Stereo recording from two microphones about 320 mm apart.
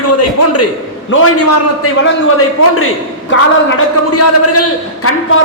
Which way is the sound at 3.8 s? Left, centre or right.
Left.